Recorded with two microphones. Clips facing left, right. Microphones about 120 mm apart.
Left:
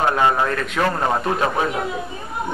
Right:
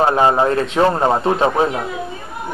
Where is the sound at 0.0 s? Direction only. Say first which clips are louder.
Right 4 dB; 30° right (ahead or behind).